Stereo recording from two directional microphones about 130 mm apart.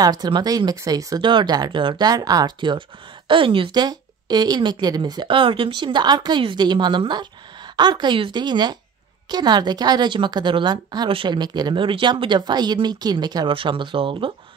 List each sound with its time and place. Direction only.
0.0 s a woman's voice: 30° right (ahead or behind)